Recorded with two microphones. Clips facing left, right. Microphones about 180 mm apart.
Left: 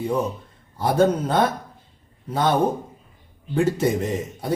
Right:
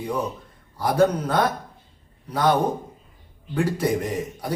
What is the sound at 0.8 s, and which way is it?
Speech, 25° left (ahead or behind).